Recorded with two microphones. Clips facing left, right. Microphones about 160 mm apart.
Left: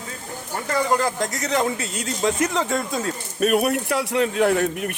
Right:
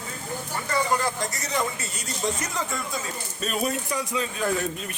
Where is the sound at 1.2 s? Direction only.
90° left.